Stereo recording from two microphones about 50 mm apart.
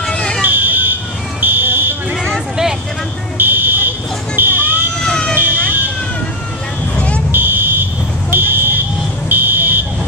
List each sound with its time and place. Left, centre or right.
0.1 s fire alarm: centre
0.4 s fire alarm: right
3.3 s buzzer: right
4.4 s smoke detector: right
5.0 s fire alarm: centre
5.3 s emergency vehicle: right
7.3 s fire alarm: right
8.3 s a sound: right
9.3 s buzzer: right